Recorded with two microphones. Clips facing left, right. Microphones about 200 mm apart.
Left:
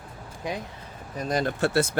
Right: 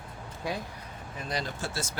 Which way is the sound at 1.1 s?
45° left (ahead or behind).